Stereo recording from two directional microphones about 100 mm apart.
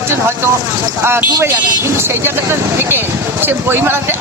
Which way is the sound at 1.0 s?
25° right (ahead or behind).